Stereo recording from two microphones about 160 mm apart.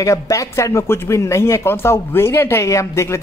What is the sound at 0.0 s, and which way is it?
Speech, 20° left (ahead or behind).